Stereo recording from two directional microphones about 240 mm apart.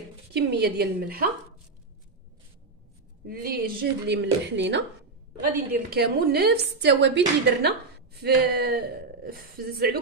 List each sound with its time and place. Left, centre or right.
0.3 s a woman's voice: right
3.3 s a woman's voice: right